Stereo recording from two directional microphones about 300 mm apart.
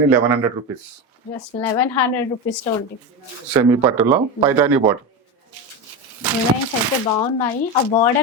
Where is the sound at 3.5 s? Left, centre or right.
Centre.